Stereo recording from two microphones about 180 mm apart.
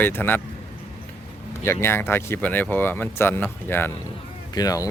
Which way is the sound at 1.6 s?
15° left (ahead or behind).